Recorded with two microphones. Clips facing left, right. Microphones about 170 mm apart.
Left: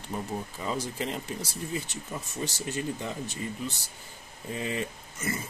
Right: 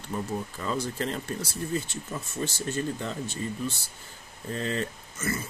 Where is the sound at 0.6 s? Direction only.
15° left (ahead or behind).